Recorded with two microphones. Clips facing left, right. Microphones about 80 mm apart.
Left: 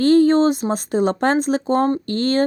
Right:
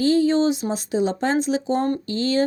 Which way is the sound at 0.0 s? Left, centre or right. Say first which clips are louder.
Left 4 dB; left.